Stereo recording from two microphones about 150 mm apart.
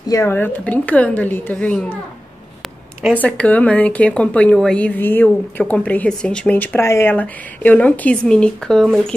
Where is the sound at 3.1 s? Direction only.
10° left (ahead or behind).